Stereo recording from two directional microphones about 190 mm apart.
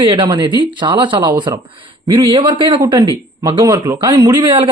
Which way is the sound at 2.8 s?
15° right (ahead or behind).